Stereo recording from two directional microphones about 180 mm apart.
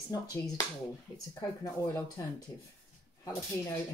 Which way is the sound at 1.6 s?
15° left (ahead or behind).